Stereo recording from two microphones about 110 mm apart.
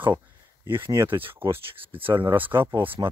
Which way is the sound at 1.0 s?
55° right (ahead or behind).